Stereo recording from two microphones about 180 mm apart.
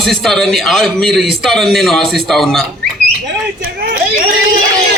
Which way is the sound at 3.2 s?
60° right (ahead or behind).